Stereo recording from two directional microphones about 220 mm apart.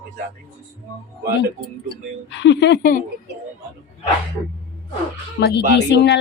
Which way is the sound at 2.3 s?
55° left (ahead or behind).